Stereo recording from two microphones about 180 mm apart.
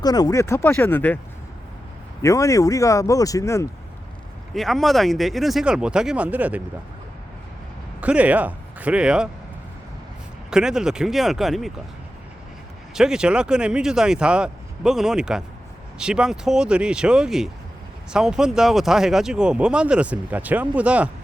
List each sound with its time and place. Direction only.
0.0 s speech: 20° left (ahead or behind)
2.2 s speech: 15° left (ahead or behind)
4.5 s speech: centre (ahead or behind)
8.0 s speech: 5° right (ahead or behind)
10.5 s speech: 5° right (ahead or behind)
12.9 s speech: 5° right (ahead or behind)